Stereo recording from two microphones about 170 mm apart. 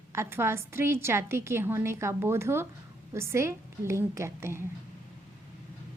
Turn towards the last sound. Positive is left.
turn(degrees=-15)  # may be behind; listen again after turning